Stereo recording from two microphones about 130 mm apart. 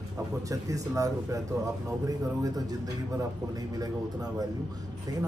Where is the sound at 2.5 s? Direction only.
30° right (ahead or behind).